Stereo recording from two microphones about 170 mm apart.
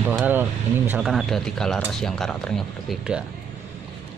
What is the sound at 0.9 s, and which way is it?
Speech, centre (ahead or behind).